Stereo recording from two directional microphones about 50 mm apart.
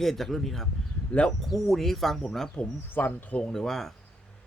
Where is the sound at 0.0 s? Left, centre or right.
Centre.